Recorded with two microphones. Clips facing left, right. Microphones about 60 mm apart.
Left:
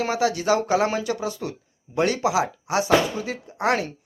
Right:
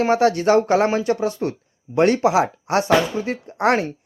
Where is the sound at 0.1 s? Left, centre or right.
Right.